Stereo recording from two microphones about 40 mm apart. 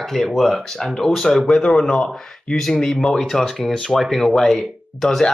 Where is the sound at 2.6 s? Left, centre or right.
Centre.